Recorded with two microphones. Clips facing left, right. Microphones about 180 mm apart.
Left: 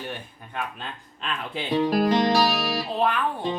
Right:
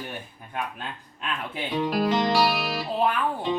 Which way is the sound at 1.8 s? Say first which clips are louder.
Left 2 dB; 40° left (ahead or behind).